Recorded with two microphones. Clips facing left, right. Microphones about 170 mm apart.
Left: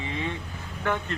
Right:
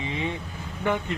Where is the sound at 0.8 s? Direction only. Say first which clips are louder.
Right 2 dB; 15° right (ahead or behind).